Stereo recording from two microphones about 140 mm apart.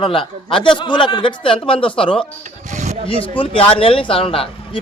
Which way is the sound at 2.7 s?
55° right (ahead or behind).